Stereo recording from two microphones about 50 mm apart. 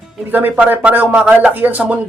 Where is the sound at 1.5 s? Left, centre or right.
Right.